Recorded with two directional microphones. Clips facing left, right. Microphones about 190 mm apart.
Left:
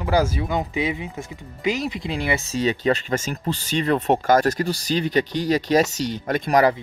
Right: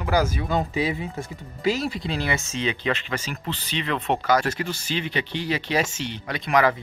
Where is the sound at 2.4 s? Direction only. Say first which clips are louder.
Left 5 dB; 40° left (ahead or behind).